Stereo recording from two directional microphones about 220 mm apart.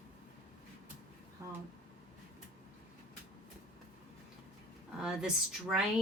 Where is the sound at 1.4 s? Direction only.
10° right (ahead or behind).